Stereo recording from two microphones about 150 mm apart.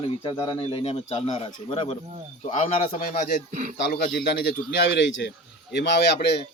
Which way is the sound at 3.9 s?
90° left.